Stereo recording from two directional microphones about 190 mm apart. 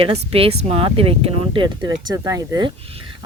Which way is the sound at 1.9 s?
15° right (ahead or behind).